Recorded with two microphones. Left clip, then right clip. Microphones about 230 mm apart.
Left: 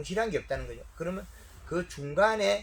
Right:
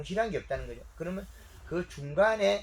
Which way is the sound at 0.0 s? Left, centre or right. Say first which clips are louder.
Left 1 dB; left.